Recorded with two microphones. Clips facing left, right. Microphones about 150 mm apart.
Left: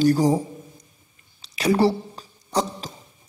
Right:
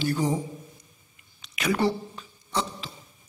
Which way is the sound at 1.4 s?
35° left (ahead or behind).